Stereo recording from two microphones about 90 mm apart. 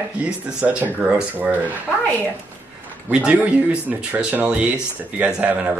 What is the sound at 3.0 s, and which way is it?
Speech, 15° right (ahead or behind).